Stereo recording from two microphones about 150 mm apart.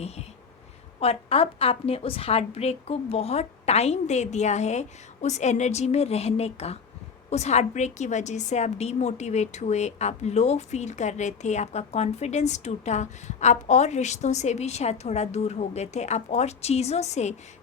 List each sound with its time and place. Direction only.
0.9 s a woman's voice: 45° left (ahead or behind)